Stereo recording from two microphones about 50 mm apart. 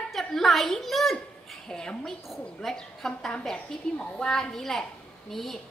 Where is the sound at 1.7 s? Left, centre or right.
Centre.